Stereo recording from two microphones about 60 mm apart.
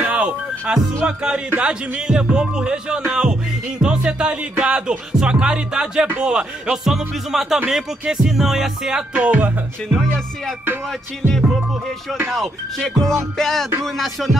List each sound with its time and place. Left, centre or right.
0.0 s music: centre
12.3 s music: centre